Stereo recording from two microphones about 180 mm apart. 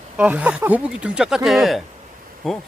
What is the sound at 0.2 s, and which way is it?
Speech, 5° right (ahead or behind).